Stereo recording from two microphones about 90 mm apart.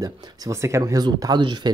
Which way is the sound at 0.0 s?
35° right (ahead or behind).